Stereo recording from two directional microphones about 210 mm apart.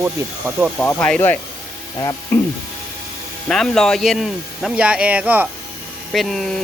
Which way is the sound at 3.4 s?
Centre (ahead or behind).